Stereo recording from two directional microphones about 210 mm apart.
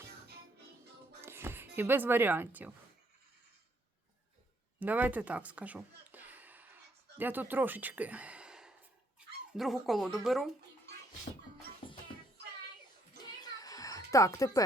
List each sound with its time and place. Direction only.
1.2 s speech: 10° right (ahead or behind)
4.8 s a sound: 10° right (ahead or behind)
7.2 s speech: 10° right (ahead or behind)
11.8 s music: 25° left (ahead or behind)
13.2 s music: 20° left (ahead or behind)